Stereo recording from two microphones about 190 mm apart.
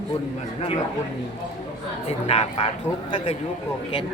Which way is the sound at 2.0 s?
35° left (ahead or behind).